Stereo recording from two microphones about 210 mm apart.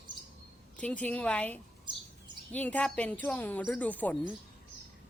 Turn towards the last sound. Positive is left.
turn(degrees=5)  # may be behind; listen again after turning